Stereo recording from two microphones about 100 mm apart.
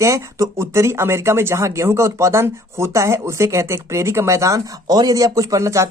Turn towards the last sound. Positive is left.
turn(degrees=-30)  # may be behind; listen again after turning